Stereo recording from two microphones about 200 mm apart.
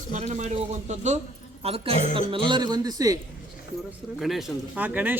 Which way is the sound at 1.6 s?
30° right (ahead or behind).